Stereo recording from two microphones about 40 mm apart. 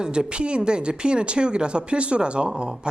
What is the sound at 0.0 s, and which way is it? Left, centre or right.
Speech, right.